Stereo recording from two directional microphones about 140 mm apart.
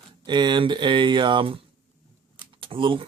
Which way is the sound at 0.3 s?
35° right (ahead or behind).